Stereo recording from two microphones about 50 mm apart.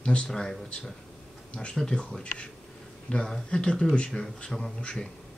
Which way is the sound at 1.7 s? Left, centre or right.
Centre.